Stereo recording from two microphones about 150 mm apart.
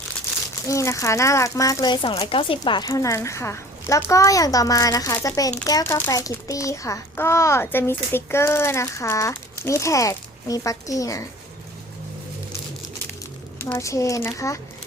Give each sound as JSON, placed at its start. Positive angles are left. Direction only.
{"t": 0.7, "sound": "a child's voice", "side_deg": 20}
{"t": 2.9, "sound": "a child's voice", "side_deg": 20}
{"t": 13.7, "sound": "a child's voice", "side_deg": 20}